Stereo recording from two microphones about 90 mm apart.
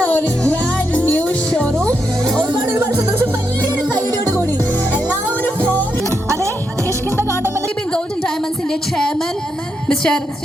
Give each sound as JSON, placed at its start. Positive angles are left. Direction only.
{"t": 0.0, "sound": "music", "side_deg": 15}
{"t": 4.9, "sound": "music", "side_deg": 20}
{"t": 6.1, "sound": "music", "side_deg": -30}
{"t": 6.8, "sound": "music", "side_deg": 30}
{"t": 9.9, "sound": "a sound", "side_deg": 10}